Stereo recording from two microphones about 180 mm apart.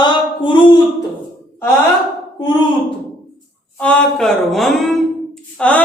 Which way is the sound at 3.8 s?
5° left (ahead or behind).